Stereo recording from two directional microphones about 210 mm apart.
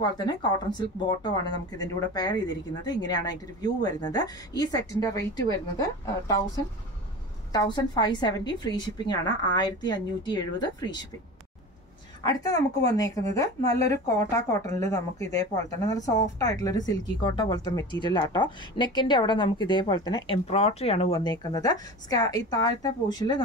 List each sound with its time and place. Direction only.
0.0 s speech: 20° left (ahead or behind)
12.2 s speech: 15° left (ahead or behind)